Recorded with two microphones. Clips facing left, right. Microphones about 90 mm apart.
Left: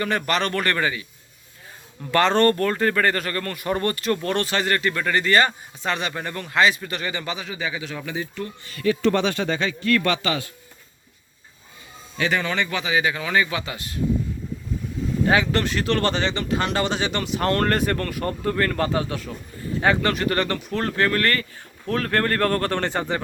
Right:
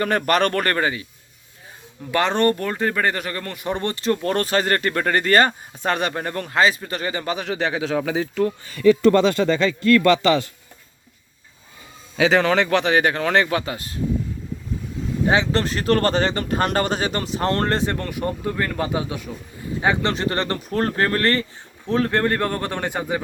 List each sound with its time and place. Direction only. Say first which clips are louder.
0.0 s speech: right 4 dB; 45° right (ahead or behind)
2.1 s speech: left 1 dB; 15° right (ahead or behind); by 7.4 s 40° right (ahead or behind)
7.4 s speech: right 6 dB; 75° right (ahead or behind); by 8.5 s 90° right
12.1 s speech: right 7 dB; 90° right; by 14.0 s 35° right (ahead or behind)
15.3 s speech: right 1 dB; 25° right (ahead or behind)
15.6 s speech: right 3 dB; 40° right (ahead or behind); by 23.2 s 10° right (ahead or behind)